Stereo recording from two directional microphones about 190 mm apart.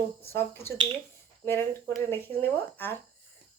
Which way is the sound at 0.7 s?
25° right (ahead or behind).